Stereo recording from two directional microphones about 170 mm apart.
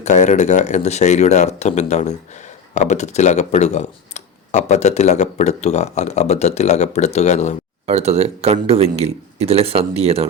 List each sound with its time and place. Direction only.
0.0 s speech: 45° left (ahead or behind)
7.9 s speech: 40° right (ahead or behind)